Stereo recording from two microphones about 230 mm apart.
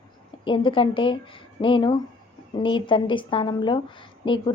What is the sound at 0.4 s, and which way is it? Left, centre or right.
Speech, left.